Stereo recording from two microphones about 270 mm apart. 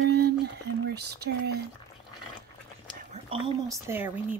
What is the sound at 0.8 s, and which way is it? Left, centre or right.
Speech, right.